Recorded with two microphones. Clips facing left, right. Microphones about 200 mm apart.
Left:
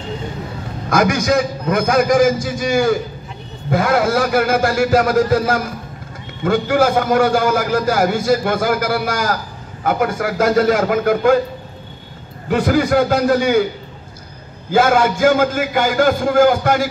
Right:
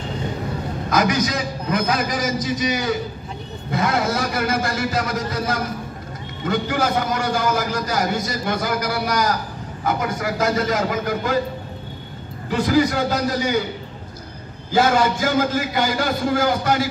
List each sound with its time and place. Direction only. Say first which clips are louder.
0.8 s a man's voice: left 4 dB; 45° left (ahead or behind)
12.4 s a man's voice: left 3 dB; 55° left (ahead or behind)
14.7 s a man's voice: left 3 dB; 55° left (ahead or behind)